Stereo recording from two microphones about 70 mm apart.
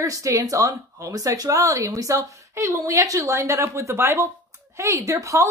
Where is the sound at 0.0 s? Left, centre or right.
Right.